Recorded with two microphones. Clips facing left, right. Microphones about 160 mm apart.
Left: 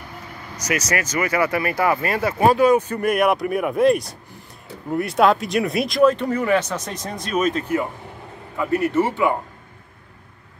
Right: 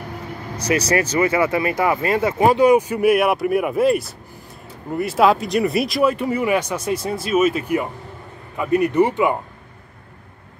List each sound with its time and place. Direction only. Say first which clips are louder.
0.6 s speech: right 5 dB; 30° right (ahead or behind)